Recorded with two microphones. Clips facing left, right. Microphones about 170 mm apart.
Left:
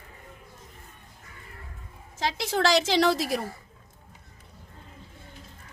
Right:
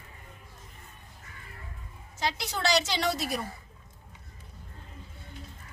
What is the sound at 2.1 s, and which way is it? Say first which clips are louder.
A woman's voice: left 5 dB; 90° left.